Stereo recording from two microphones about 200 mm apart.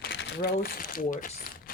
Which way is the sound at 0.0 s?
50° left (ahead or behind).